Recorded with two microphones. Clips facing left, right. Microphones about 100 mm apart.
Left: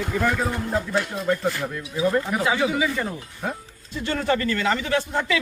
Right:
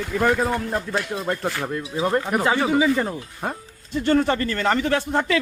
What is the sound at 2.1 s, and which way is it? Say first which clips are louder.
Speech: right 2 dB; 50° right (ahead or behind).